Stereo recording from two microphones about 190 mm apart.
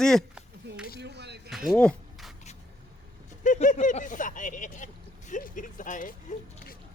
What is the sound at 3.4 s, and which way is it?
Speech, 45° left (ahead or behind).